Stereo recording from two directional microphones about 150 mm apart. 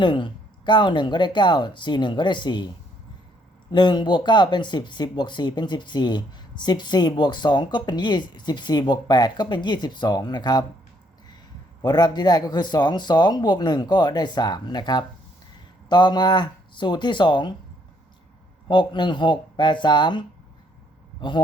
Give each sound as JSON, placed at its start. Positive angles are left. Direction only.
{"t": 0.0, "sound": "speech", "side_deg": 30}
{"t": 3.7, "sound": "speech", "side_deg": 30}
{"t": 11.8, "sound": "speech", "side_deg": 25}
{"t": 18.7, "sound": "speech", "side_deg": 30}